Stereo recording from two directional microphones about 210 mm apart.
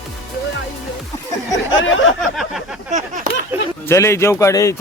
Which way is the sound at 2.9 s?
35° right (ahead or behind).